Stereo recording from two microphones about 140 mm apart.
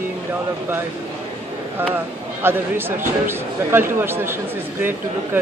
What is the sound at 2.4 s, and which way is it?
Speech, 15° right (ahead or behind).